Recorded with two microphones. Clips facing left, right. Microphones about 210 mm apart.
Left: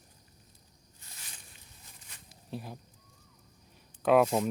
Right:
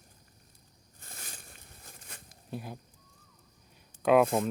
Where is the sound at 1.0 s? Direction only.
50° right (ahead or behind).